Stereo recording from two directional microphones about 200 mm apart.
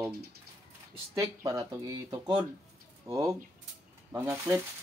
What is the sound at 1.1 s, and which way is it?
Speech, 15° right (ahead or behind).